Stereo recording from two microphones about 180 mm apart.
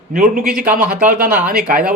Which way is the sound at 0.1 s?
50° right (ahead or behind).